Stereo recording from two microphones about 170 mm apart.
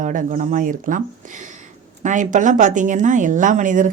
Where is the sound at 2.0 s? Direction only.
50° right (ahead or behind).